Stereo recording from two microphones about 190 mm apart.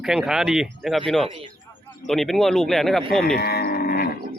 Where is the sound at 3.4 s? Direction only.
55° left (ahead or behind).